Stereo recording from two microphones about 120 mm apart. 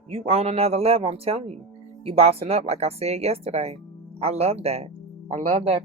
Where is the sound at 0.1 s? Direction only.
60° right (ahead or behind).